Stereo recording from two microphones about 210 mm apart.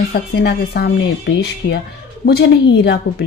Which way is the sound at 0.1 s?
50° left (ahead or behind).